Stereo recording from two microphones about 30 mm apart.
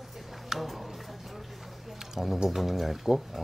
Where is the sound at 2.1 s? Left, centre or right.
Centre.